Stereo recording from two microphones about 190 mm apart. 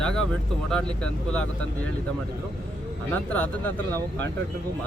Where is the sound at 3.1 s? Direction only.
10° left (ahead or behind).